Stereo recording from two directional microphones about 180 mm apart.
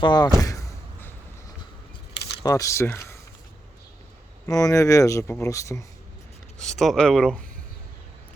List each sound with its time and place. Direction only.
0.0 s speech: 25° left (ahead or behind)
0.3 s a sound: 20° left (ahead or behind)
2.4 s speech: 20° left (ahead or behind)
4.6 s speech: 20° left (ahead or behind)
6.6 s speech: centre (ahead or behind)